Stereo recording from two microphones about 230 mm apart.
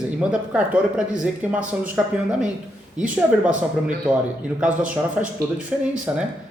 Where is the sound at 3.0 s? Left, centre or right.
Centre.